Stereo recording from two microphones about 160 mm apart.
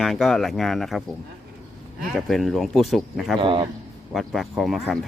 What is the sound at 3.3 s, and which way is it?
Speech, 30° right (ahead or behind).